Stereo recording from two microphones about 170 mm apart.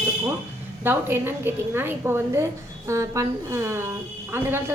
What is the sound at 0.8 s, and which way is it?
A woman's voice, 10° right (ahead or behind).